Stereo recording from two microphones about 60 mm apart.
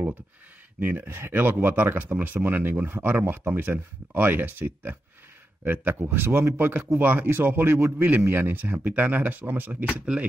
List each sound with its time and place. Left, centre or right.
0.7 s speech: right
9.8 s speech: centre